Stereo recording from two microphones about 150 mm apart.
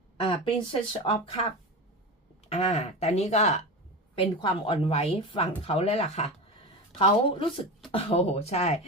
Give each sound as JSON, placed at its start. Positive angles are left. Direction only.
{"t": 0.2, "sound": "speech", "side_deg": 35}
{"t": 2.5, "sound": "speech", "side_deg": 45}
{"t": 4.1, "sound": "speech", "side_deg": 35}